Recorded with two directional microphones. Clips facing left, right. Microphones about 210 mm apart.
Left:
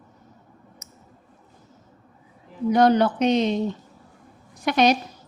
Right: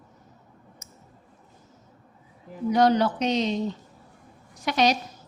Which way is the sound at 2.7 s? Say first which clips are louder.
Left 3 dB; 55° left (ahead or behind).